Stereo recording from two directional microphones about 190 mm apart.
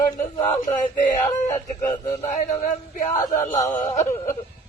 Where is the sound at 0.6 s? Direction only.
40° left (ahead or behind).